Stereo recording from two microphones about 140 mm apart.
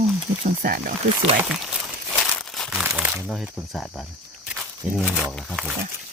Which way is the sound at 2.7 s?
10° right (ahead or behind).